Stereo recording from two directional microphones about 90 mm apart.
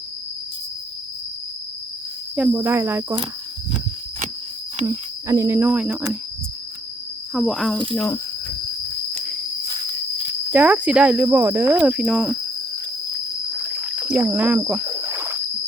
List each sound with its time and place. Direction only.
2.3 s speech: 15° right (ahead or behind)
2.6 s cricket: 30° right (ahead or behind)
4.9 s speech: 35° right (ahead or behind)
5.7 s speech: 10° right (ahead or behind)
7.3 s speech: centre (ahead or behind)
10.5 s speech: 15° right (ahead or behind)
11.9 s speech: 5° right (ahead or behind)
13.7 s a sound: 10° right (ahead or behind)
14.3 s speech: 15° right (ahead or behind)
15.0 s rowboat: 25° right (ahead or behind)